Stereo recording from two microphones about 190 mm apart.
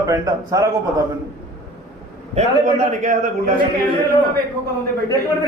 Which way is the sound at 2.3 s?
40° right (ahead or behind).